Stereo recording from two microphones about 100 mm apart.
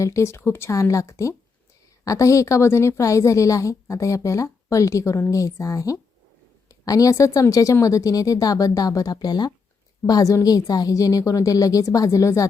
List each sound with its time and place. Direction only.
0.0 s a woman's voice: 30° left (ahead or behind)